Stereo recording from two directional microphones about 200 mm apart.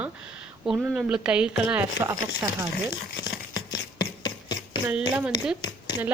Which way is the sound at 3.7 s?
20° left (ahead or behind).